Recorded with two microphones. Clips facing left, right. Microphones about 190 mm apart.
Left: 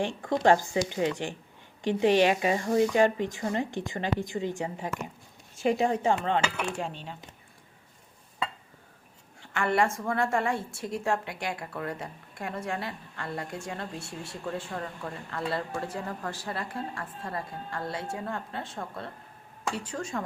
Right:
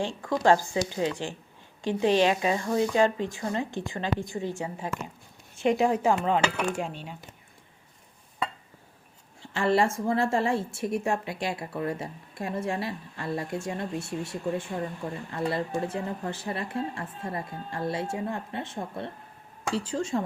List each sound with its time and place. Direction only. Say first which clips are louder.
0.4 s a woman's voice: even; 20° left (ahead or behind)
6.1 s dishes: right 2 dB; 10° right (ahead or behind)
9.4 s a woman's voice: right 2 dB; 25° right (ahead or behind)